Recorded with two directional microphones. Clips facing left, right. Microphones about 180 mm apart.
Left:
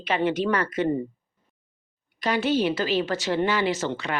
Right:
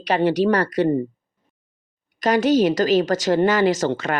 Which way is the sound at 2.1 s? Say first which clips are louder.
Right 6 dB; 45° right (ahead or behind).